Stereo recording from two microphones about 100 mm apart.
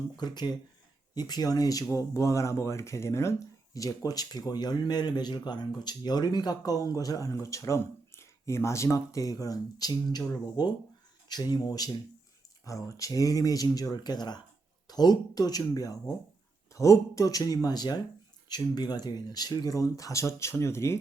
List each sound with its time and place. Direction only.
0.2 s speech: 45° left (ahead or behind); by 21.0 s 25° left (ahead or behind)